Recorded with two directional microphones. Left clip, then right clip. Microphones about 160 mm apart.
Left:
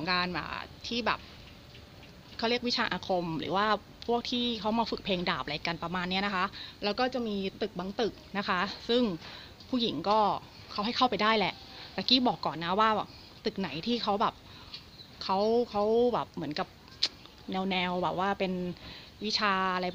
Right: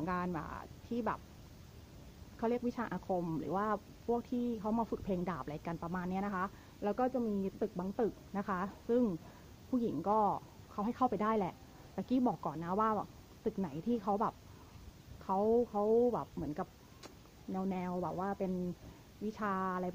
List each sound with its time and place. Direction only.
0.0 s speech: 5° right (ahead or behind)
2.4 s speech: centre (ahead or behind)
4.6 s speech: 15° left (ahead or behind)
5.0 s speech: 5° left (ahead or behind)
10.1 s speech: centre (ahead or behind)
17.9 s speech: 20° left (ahead or behind)
19.3 s speech: 10° left (ahead or behind)